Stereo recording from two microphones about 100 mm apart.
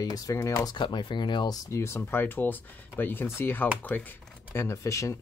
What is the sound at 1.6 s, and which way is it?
Speech, 30° left (ahead or behind).